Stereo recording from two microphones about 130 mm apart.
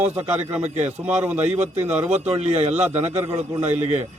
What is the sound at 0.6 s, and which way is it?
Speech, 60° right (ahead or behind).